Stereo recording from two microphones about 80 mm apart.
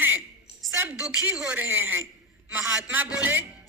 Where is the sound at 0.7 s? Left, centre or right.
Right.